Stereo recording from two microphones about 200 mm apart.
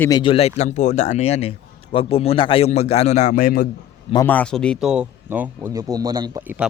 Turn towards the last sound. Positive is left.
turn(degrees=-10)  # may be behind; listen again after turning